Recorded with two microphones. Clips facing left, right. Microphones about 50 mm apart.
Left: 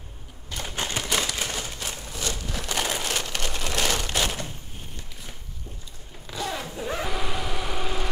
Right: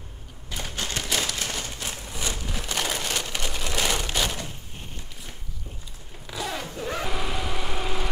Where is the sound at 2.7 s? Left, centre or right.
Centre.